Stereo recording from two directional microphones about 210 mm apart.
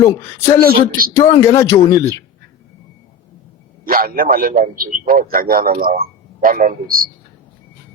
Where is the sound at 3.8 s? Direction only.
45° right (ahead or behind).